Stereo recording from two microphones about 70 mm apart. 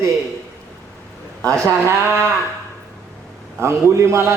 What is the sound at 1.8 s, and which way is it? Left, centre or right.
Speech, right.